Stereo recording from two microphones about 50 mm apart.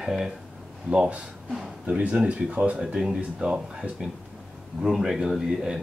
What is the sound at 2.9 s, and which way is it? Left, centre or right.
Speech, centre.